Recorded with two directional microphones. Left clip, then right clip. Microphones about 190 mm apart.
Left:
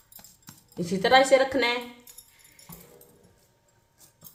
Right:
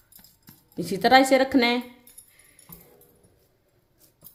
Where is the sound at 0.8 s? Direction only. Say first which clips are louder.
Right 2 dB; 55° right (ahead or behind).